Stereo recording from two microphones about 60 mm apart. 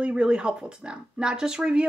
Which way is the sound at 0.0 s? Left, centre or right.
Centre.